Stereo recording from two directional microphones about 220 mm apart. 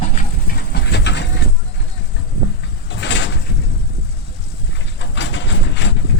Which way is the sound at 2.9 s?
55° left (ahead or behind).